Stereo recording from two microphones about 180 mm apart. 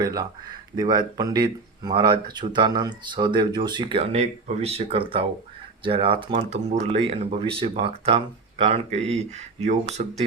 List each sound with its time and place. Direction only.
0.0 s speech: 20° right (ahead or behind); by 10.1 s 40° right (ahead or behind)